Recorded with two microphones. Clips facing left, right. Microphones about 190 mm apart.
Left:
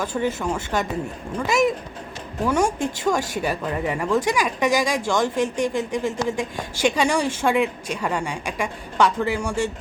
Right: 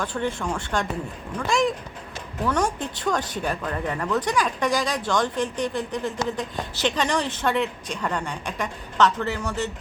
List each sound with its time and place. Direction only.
0.0 s speech: 10° left (ahead or behind)